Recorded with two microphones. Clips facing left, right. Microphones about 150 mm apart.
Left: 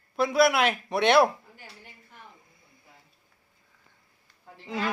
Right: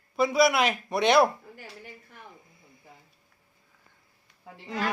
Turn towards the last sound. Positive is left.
turn(degrees=0)  # may be behind; listen again after turning